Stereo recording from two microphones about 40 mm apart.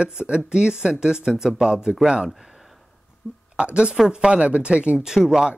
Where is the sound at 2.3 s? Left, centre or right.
Centre.